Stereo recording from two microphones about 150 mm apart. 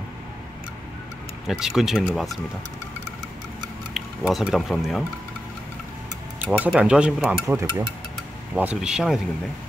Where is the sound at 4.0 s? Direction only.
Centre (ahead or behind).